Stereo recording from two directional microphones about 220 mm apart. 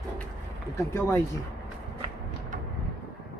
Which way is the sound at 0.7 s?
15° left (ahead or behind).